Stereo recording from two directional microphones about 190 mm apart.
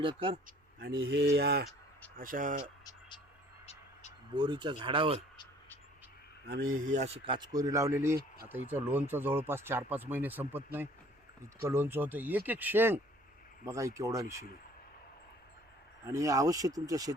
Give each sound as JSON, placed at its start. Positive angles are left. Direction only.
{"t": 0.0, "sound": "speech", "side_deg": -25}
{"t": 0.9, "sound": "speech", "side_deg": -70}
{"t": 2.1, "sound": "speech", "side_deg": -45}
{"t": 4.4, "sound": "speech", "side_deg": -25}
{"t": 6.8, "sound": "speech", "side_deg": -35}
{"t": 16.0, "sound": "speech", "side_deg": -15}